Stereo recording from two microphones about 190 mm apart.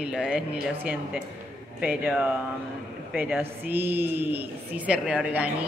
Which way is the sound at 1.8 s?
5° right (ahead or behind).